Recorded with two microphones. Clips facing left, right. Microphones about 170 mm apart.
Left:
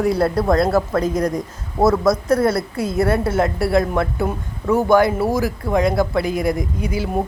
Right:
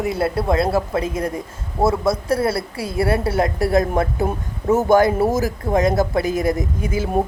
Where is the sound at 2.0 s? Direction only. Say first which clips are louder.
Left 3 dB; 30° right (ahead or behind).